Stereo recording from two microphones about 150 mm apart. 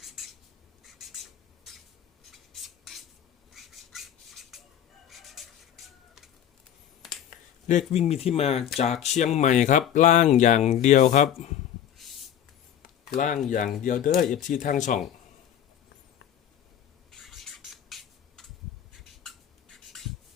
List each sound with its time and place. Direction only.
0.9 s squawk: centre (ahead or behind)
2.3 s rub: centre (ahead or behind)
3.5 s squawk: centre (ahead or behind)
5.0 s fowl: centre (ahead or behind)
7.3 s speech: 55° left (ahead or behind)
12.0 s a sound: centre (ahead or behind)
12.8 s a sound: 65° left (ahead or behind)
13.8 s speech: 60° left (ahead or behind)
17.1 s a sound: centre (ahead or behind)